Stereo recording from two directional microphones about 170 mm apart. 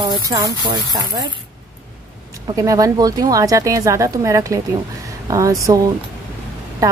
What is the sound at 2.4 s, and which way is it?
Speech, 20° right (ahead or behind).